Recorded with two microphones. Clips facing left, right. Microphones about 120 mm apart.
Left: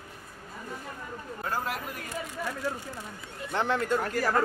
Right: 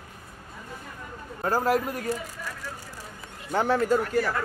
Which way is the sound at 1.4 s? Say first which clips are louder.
Right 9 dB; 40° right (ahead or behind).